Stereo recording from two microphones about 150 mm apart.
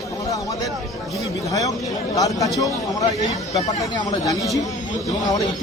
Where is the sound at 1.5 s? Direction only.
25° left (ahead or behind).